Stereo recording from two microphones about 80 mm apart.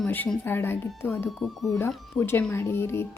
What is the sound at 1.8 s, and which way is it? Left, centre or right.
Speech, left.